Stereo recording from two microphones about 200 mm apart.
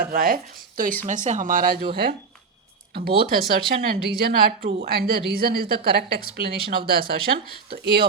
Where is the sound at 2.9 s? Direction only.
50° right (ahead or behind).